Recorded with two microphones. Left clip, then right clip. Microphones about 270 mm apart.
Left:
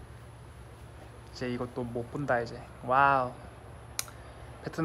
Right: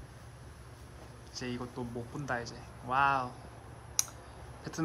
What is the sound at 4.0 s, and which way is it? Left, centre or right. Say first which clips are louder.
Clicking: right 4 dB; centre.